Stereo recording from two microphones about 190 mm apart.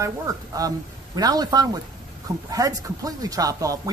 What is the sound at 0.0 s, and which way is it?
A man's voice, 20° right (ahead or behind).